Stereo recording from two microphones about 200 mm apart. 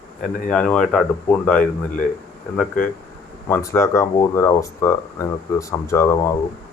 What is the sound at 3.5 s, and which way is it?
Speech, 15° left (ahead or behind).